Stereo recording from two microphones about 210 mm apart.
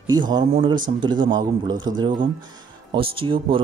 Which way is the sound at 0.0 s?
20° right (ahead or behind).